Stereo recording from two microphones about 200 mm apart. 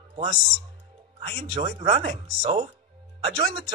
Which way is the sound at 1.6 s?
35° right (ahead or behind).